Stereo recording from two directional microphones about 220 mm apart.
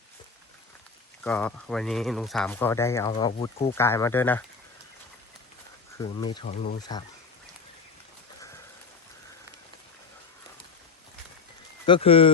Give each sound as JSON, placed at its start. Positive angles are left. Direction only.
{"t": 1.2, "sound": "speech", "side_deg": 5}
{"t": 3.8, "sound": "speech", "side_deg": 10}
{"t": 6.0, "sound": "speech", "side_deg": 20}
{"t": 6.5, "sound": "speech", "side_deg": 35}
{"t": 11.9, "sound": "speech", "side_deg": 25}